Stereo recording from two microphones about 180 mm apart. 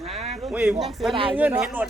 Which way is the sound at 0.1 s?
35° right (ahead or behind).